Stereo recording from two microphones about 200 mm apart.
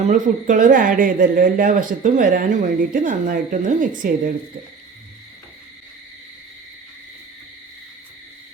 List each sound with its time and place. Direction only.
0.0 s speech: 40° right (ahead or behind)